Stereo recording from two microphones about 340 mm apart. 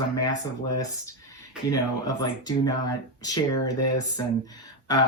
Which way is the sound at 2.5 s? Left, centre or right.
Centre.